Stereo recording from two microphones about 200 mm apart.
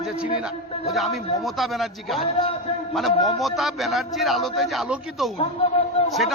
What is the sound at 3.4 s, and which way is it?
A man's voice, centre (ahead or behind).